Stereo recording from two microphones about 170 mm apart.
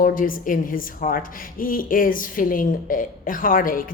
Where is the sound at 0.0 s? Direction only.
55° left (ahead or behind).